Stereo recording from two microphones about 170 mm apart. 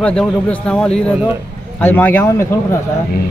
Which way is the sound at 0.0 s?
5° left (ahead or behind).